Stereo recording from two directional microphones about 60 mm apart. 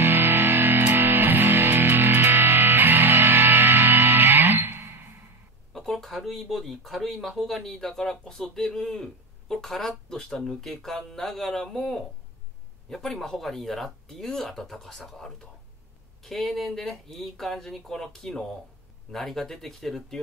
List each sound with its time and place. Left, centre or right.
0.0 s music: right
5.7 s speech: centre